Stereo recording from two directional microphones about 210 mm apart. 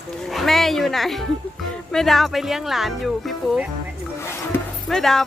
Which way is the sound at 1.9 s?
Centre (ahead or behind).